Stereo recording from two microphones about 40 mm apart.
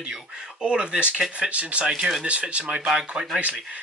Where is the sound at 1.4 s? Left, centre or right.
Right.